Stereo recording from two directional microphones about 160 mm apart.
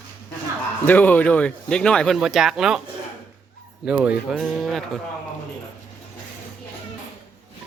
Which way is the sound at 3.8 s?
5° right (ahead or behind).